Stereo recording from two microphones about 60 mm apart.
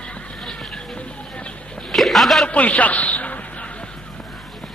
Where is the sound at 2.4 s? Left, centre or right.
Left.